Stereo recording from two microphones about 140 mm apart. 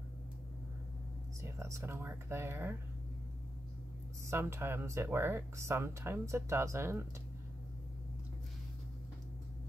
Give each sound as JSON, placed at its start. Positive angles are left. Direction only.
{"t": 1.4, "sound": "speech", "side_deg": -20}
{"t": 4.3, "sound": "speech", "side_deg": -15}